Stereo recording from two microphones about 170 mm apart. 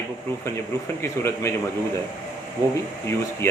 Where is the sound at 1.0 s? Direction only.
15° left (ahead or behind).